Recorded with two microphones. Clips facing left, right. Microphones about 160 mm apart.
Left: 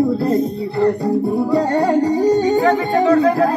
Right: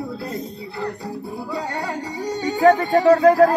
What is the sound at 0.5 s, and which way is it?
Music, 40° left (ahead or behind).